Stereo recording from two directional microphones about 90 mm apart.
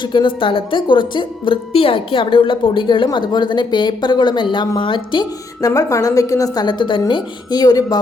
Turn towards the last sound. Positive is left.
turn(degrees=50)  # may be behind; listen again after turning